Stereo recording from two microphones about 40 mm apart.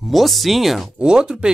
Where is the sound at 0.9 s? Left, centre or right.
Right.